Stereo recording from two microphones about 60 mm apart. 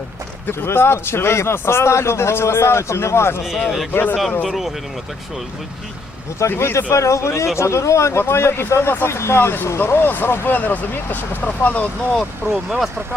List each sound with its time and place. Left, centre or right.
0.4 s a man's voice: left
3.9 s speech: left
4.4 s speech: centre
6.5 s a man's voice: left
6.9 s a man's voice: left
12.4 s speech: right